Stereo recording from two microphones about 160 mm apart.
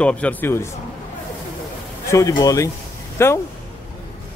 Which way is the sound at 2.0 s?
20° left (ahead or behind).